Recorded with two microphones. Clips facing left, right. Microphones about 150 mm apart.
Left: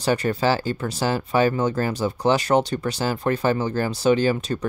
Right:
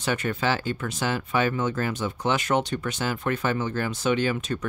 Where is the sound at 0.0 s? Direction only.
35° left (ahead or behind).